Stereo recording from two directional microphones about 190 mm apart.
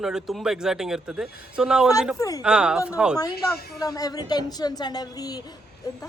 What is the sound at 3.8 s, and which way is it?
Speech, 20° left (ahead or behind).